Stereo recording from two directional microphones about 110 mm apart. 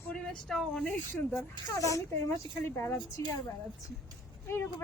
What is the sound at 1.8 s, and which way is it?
Speech, 30° left (ahead or behind).